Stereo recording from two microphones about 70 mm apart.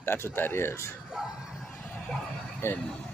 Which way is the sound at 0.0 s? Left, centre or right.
Left.